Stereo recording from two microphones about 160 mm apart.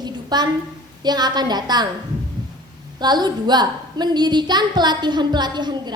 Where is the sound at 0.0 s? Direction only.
25° right (ahead or behind).